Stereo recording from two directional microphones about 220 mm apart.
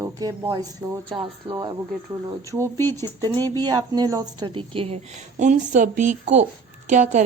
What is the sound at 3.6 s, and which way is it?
A woman's voice, 20° right (ahead or behind).